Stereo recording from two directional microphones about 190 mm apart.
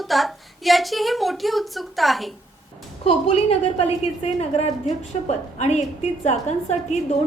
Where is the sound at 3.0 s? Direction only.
30° left (ahead or behind).